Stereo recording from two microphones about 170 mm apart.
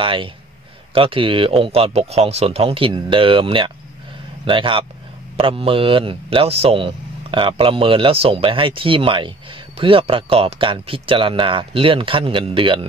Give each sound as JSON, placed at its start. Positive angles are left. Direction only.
{"t": 0.0, "sound": "speech", "side_deg": -30}